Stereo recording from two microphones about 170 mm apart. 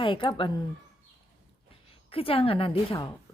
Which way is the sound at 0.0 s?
30° left (ahead or behind).